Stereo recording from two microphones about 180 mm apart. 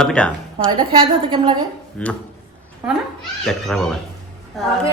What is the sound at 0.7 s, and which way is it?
Speech, 25° right (ahead or behind).